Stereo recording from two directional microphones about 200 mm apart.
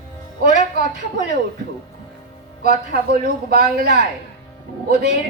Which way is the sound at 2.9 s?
50° right (ahead or behind).